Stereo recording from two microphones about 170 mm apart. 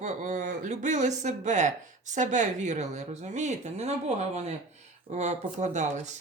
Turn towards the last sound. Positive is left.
turn(degrees=-45)  # may be behind; listen again after turning